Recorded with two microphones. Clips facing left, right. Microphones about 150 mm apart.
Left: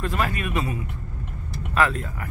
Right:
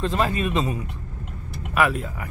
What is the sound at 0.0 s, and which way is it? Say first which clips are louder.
Speech: right 3 dB; 25° right (ahead or behind).